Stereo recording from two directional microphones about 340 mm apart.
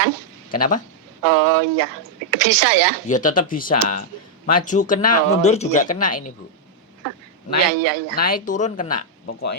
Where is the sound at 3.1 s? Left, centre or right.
Left.